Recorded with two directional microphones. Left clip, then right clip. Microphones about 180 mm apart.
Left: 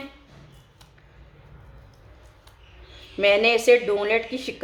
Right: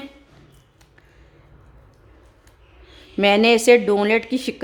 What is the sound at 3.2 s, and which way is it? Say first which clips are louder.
A woman's voice: right 3 dB; 55° right (ahead or behind).